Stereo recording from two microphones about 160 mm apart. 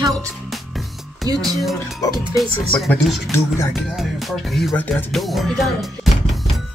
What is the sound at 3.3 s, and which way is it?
Speech, 20° left (ahead or behind).